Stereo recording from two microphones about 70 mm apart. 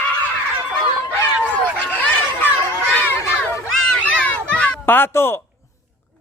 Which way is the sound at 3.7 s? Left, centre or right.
Centre.